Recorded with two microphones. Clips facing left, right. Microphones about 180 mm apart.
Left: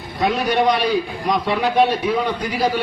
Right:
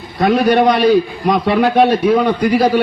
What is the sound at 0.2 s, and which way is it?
A man's voice, 60° right (ahead or behind).